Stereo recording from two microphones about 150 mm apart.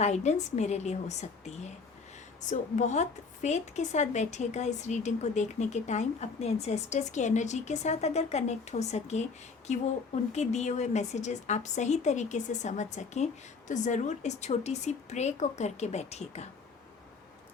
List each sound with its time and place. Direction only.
0.0 s a woman's voice: 50° left (ahead or behind)
10.3 s a woman's voice: 50° left (ahead or behind)